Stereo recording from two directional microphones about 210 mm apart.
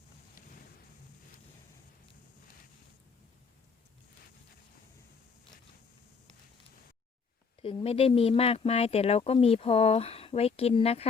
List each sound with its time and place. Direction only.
7.6 s speech: 25° left (ahead or behind)